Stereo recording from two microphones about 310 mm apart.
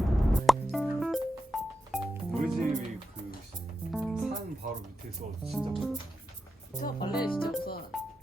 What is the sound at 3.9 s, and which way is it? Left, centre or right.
Music, centre.